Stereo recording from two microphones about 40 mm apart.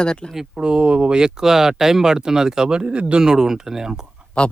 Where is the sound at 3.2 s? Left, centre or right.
Centre.